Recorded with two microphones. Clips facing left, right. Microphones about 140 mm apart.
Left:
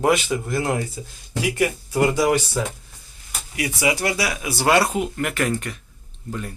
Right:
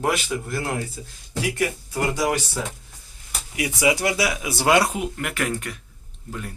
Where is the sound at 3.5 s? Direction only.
20° right (ahead or behind).